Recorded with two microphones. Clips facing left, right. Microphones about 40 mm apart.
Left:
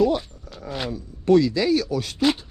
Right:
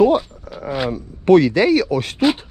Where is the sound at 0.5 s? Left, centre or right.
Right.